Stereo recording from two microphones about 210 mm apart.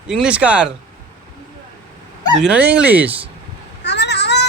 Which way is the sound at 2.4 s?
5° right (ahead or behind).